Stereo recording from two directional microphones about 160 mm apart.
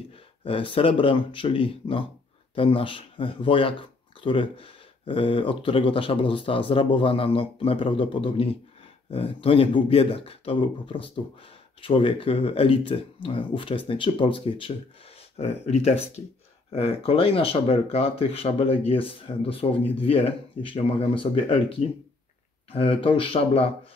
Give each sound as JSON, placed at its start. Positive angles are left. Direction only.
{"t": 0.5, "sound": "speech", "side_deg": 35}